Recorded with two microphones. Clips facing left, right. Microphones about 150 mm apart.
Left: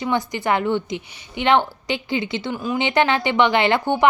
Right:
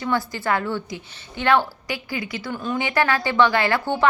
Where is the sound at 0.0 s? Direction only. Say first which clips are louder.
Left 2 dB; 20° left (ahead or behind).